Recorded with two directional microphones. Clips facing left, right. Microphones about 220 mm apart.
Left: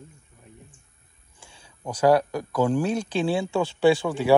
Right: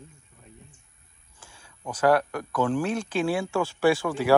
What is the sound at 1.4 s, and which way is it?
Speech, 20° left (ahead or behind).